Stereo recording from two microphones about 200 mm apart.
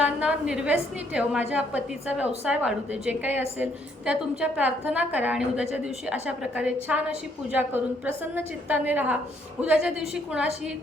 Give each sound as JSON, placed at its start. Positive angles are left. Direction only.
{"t": 0.0, "sound": "a woman's voice", "side_deg": -5}